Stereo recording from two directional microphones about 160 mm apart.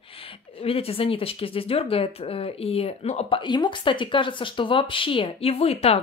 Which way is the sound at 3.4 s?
30° left (ahead or behind).